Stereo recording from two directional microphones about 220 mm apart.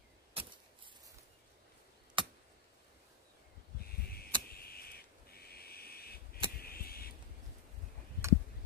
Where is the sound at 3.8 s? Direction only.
45° left (ahead or behind).